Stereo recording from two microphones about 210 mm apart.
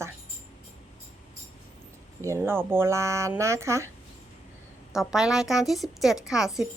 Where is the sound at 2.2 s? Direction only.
10° right (ahead or behind).